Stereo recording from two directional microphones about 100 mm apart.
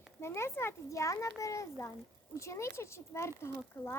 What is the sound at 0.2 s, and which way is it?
Speech, 25° left (ahead or behind).